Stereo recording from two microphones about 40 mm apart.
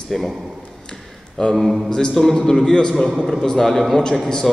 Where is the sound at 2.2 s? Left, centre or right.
Centre.